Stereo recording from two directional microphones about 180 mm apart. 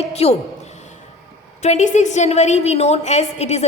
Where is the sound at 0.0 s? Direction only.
35° left (ahead or behind).